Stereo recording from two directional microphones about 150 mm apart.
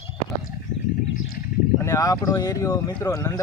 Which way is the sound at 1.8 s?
20° left (ahead or behind).